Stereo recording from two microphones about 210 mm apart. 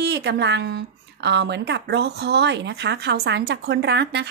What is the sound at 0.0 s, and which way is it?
Speech, 55° right (ahead or behind).